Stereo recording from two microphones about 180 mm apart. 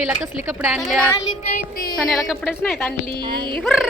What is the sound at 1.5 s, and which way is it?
Music, 55° left (ahead or behind).